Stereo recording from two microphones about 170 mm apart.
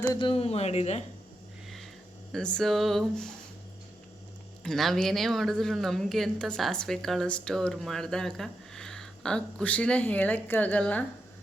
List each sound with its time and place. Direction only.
0.1 s speech: 30° left (ahead or behind)
2.3 s a woman's voice: 5° left (ahead or behind)
4.6 s a woman's voice: centre (ahead or behind)